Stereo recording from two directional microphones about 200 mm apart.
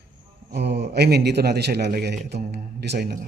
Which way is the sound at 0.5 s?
55° right (ahead or behind).